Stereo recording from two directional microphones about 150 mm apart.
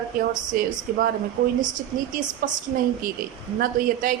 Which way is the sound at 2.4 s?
65° right (ahead or behind).